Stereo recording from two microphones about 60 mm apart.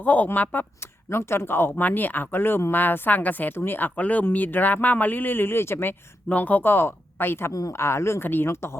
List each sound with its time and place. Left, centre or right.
0.0 s speech: left
1.1 s speech: left
1.7 s speech: left
6.2 s speech: left